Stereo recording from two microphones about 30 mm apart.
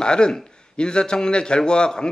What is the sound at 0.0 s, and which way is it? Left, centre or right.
A man's voice, left.